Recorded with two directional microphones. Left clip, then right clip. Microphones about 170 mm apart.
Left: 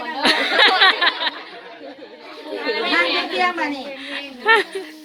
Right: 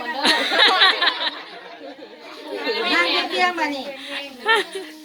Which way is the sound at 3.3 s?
Centre (ahead or behind).